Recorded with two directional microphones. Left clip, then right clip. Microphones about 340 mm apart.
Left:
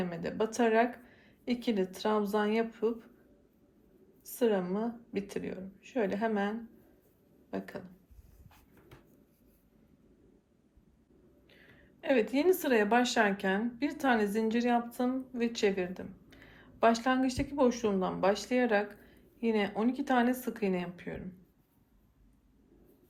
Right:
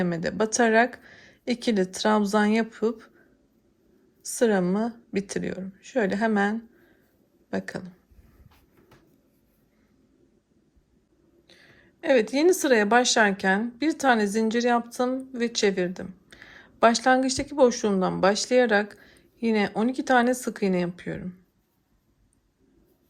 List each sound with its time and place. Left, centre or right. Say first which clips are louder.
0.0 s speech: right 8 dB; centre
4.2 s speech: right 7 dB; centre
11.4 s speech: right 6 dB; centre